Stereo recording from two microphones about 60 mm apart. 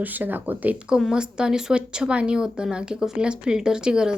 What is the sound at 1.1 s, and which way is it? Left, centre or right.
Speech, centre.